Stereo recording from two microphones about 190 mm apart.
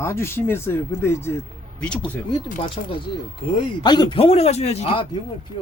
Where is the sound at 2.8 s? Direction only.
30° left (ahead or behind).